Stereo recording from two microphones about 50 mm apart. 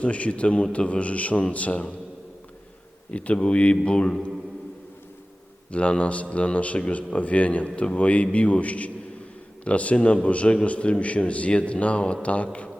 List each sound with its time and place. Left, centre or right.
0.0 s a man's voice: left
3.1 s a man's voice: left
5.7 s a man's voice: left